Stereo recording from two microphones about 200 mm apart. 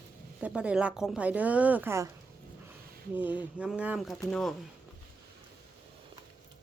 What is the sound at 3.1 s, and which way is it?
Speech, 10° right (ahead or behind).